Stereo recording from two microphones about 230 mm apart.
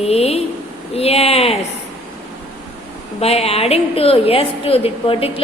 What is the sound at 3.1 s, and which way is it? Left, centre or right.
A woman's voice, left.